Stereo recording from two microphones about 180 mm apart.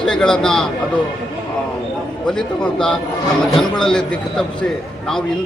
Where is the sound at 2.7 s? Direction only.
5° left (ahead or behind).